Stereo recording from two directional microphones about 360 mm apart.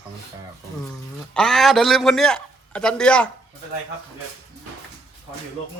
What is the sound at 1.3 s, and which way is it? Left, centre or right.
A man's voice, centre.